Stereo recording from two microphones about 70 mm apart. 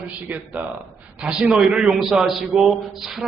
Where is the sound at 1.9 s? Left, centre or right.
Centre.